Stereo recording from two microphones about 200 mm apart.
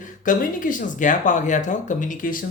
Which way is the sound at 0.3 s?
40° left (ahead or behind).